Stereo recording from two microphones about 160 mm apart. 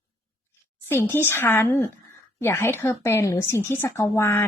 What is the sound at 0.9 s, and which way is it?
A woman's voice, 15° left (ahead or behind).